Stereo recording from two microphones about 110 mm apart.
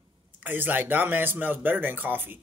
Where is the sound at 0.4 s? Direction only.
15° right (ahead or behind).